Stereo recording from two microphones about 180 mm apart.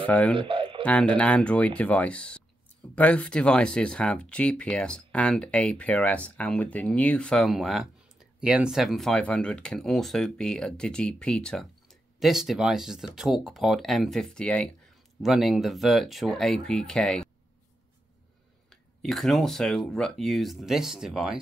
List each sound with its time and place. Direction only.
0.0 s speech: 10° left (ahead or behind)
0.3 s bird: 30° right (ahead or behind)
0.8 s speech: 5° left (ahead or behind)
18.7 s speech: centre (ahead or behind)